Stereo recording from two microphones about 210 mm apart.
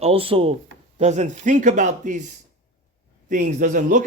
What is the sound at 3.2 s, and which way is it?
Speech, 40° right (ahead or behind).